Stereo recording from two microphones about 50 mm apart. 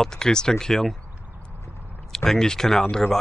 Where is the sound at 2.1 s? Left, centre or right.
Centre.